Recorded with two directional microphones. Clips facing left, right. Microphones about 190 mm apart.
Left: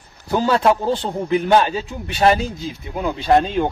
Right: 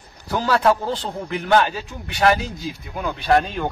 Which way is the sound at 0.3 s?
20° left (ahead or behind).